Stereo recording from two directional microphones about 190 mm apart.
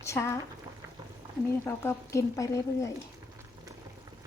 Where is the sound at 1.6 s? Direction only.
15° left (ahead or behind).